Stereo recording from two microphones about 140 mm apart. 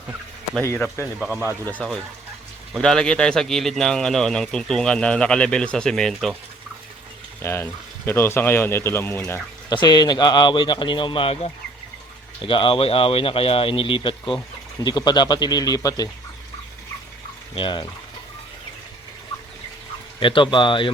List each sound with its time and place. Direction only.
0.6 s speech: 15° left (ahead or behind)
1.2 s speech: 5° right (ahead or behind)
1.8 s speech: 5° left (ahead or behind)
7.4 s speech: 15° left (ahead or behind)
9.6 s speech: 30° left (ahead or behind)
17.5 s speech: 35° left (ahead or behind)
20.1 s speech: 35° left (ahead or behind)